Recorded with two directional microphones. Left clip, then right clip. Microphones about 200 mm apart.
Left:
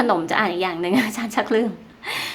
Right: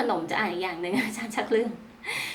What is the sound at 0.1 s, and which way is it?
A woman's voice, 45° left (ahead or behind).